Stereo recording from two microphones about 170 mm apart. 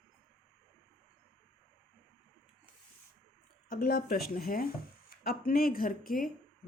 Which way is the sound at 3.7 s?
65° left (ahead or behind).